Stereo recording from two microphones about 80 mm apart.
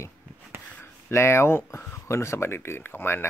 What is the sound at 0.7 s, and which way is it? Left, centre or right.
Speech, left.